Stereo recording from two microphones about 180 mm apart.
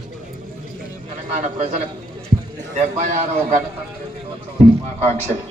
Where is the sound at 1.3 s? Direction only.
40° right (ahead or behind).